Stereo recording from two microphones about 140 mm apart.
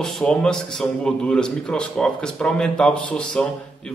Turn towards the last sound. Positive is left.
turn(degrees=5)  # may be behind; listen again after turning